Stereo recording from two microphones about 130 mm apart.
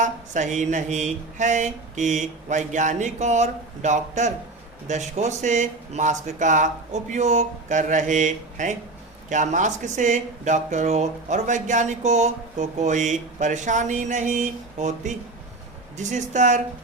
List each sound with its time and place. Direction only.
0.0 s speech: 70° right (ahead or behind)